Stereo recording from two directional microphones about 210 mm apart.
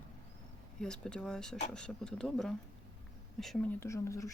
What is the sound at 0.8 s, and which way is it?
Speech, 5° left (ahead or behind).